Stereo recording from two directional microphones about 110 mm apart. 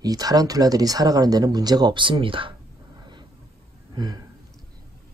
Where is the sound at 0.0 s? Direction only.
35° right (ahead or behind); by 2.5 s 50° right (ahead or behind).